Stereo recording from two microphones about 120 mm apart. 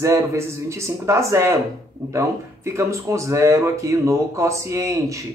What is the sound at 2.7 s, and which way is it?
A man's voice, 25° right (ahead or behind).